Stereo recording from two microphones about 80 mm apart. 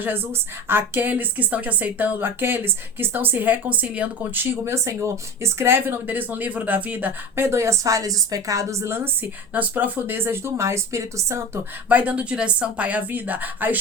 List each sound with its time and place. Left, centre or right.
0.0 s a woman's voice: right
9.5 s a woman's voice: right
11.9 s a woman's voice: centre